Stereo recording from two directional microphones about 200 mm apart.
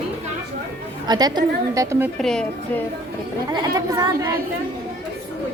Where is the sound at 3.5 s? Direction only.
20° right (ahead or behind).